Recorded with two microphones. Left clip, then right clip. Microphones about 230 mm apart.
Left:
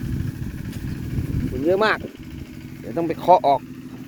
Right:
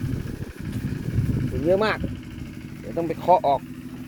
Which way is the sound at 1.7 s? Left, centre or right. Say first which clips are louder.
Left 2 dB; left.